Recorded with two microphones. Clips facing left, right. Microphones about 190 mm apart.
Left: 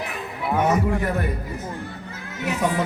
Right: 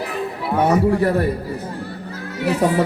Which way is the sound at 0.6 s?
35° right (ahead or behind).